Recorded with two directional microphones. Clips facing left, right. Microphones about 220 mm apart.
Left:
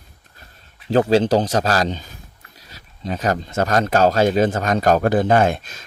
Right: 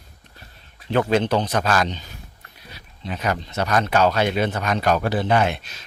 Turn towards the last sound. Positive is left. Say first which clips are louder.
# left 4 dB
turn(degrees=50)  # may be behind; listen again after turning